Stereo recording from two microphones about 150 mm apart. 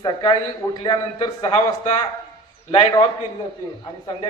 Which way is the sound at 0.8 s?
35° left (ahead or behind).